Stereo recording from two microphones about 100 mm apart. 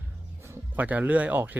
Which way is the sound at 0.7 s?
15° right (ahead or behind).